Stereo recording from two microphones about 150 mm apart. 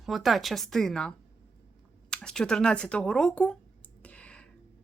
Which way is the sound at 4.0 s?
10° left (ahead or behind).